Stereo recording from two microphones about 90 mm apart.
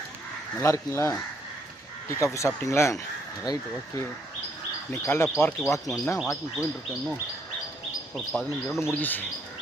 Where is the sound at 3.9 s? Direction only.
35° left (ahead or behind).